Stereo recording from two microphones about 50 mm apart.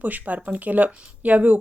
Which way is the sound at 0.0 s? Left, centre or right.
Right.